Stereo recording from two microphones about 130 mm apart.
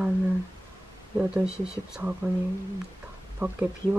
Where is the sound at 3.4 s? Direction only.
20° right (ahead or behind).